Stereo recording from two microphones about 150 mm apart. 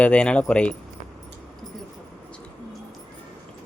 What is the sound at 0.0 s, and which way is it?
Speech, 5° left (ahead or behind).